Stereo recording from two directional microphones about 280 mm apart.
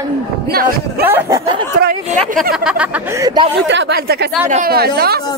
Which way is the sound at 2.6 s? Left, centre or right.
Centre.